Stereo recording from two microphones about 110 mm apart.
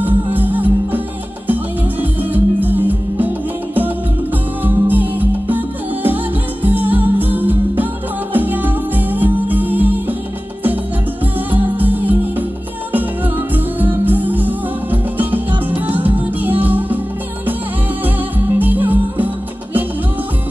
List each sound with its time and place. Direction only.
0.0 s music: 15° right (ahead or behind)
4.6 s music: 15° right (ahead or behind)
6.6 s music: 15° right (ahead or behind)
11.5 s music: 15° right (ahead or behind)
13.7 s music: 15° right (ahead or behind)
18.6 s music: 15° right (ahead or behind)